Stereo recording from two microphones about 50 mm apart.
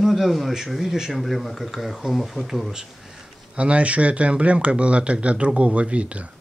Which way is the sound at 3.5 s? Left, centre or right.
Right.